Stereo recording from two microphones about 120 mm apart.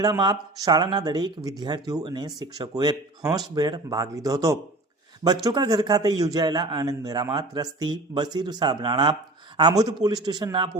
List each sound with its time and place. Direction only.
0.0 s a man's voice: 35° right (ahead or behind)